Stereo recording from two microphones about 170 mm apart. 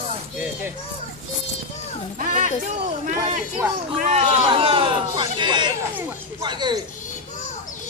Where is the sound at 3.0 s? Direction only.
45° right (ahead or behind).